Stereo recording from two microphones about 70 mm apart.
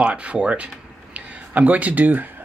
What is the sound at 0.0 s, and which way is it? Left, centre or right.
Speech, centre.